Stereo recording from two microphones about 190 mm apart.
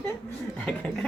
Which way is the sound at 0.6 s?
5° left (ahead or behind).